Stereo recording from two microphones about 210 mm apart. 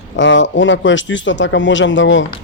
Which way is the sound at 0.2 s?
60° left (ahead or behind).